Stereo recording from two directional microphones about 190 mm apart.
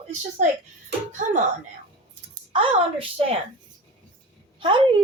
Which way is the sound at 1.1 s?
40° right (ahead or behind).